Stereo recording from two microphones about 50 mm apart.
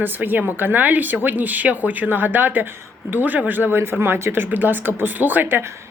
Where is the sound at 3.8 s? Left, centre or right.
Right.